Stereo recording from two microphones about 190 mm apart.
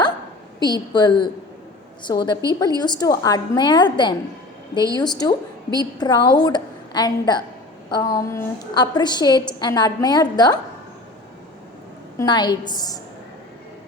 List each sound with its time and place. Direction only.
0.6 s a woman's voice: 20° left (ahead or behind)
12.1 s a woman's voice: 20° left (ahead or behind)